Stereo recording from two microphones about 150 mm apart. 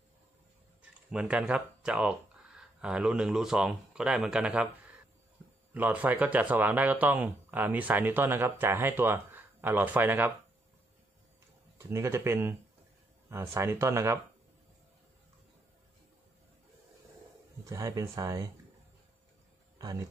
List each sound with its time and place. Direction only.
1.1 s speech: 5° right (ahead or behind)
5.7 s speech: 10° right (ahead or behind)
11.8 s speech: 20° right (ahead or behind)
17.6 s speech: 20° right (ahead or behind)
19.8 s speech: 25° right (ahead or behind)